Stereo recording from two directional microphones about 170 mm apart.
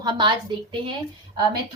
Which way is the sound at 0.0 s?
25° right (ahead or behind).